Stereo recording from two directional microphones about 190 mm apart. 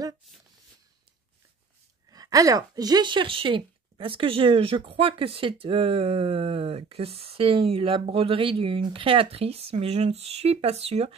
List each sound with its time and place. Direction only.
2.0 s a woman's voice: 20° right (ahead or behind)